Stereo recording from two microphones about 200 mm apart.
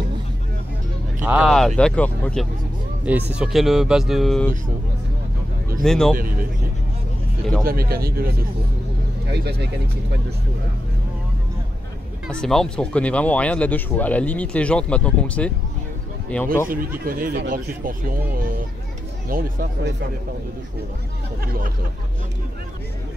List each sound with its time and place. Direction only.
1.2 s speech: 5° right (ahead or behind)
3.1 s speech: 10° right (ahead or behind)
5.8 s speech: centre (ahead or behind)
7.6 s speech: 50° right (ahead or behind)
9.3 s speech: 55° right (ahead or behind)
12.3 s speech: 5° left (ahead or behind)
17.0 s speech: 45° right (ahead or behind)
19.2 s speech: 45° right (ahead or behind)
21.5 s speech: 45° right (ahead or behind)